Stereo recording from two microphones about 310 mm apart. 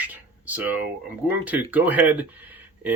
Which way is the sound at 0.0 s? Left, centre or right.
Centre.